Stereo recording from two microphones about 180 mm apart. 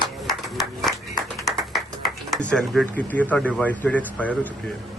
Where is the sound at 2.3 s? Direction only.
5° left (ahead or behind).